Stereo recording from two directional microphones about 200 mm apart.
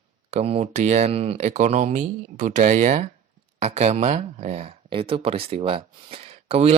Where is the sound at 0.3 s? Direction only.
30° right (ahead or behind).